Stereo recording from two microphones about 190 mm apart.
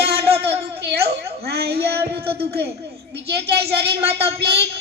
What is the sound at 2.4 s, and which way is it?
Speech, 55° right (ahead or behind).